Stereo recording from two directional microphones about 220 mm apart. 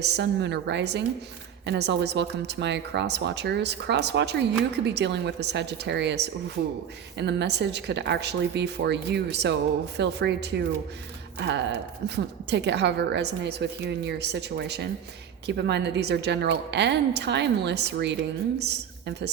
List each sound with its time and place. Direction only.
0.0 s a woman's voice: 50° right (ahead or behind)